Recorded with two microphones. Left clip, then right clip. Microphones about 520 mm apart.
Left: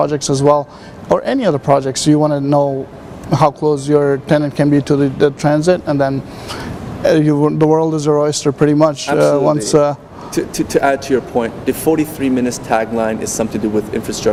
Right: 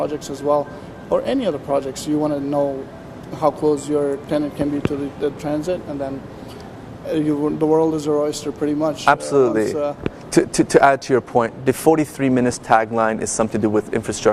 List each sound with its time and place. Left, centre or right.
0.0 s speech: left
10.3 s speech: right